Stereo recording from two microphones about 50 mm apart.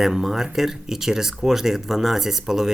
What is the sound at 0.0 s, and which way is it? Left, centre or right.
Speech, centre.